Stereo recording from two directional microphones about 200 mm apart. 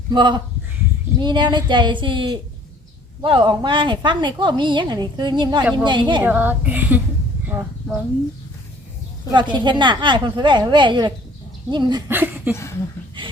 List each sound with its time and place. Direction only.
0.1 s a woman's voice: 20° right (ahead or behind)
6.2 s a woman's voice: 10° right (ahead or behind)
9.3 s a woman's voice: 25° right (ahead or behind)
12.0 s speech: 10° right (ahead or behind)